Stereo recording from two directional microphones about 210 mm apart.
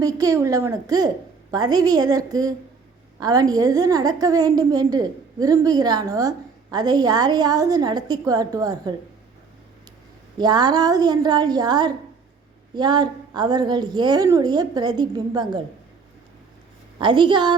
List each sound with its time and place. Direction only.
0.0 s a woman's voice: 15° right (ahead or behind)
10.3 s a woman's voice: 20° right (ahead or behind)
17.0 s a woman's voice: 20° right (ahead or behind)